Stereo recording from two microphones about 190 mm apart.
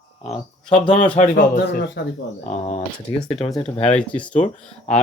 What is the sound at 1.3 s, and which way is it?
Speech, 45° left (ahead or behind).